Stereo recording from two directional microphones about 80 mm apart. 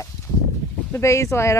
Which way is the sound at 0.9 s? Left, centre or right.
Left.